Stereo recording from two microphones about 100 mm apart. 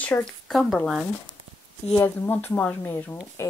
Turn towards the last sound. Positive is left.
turn(degrees=20)  # may be behind; listen again after turning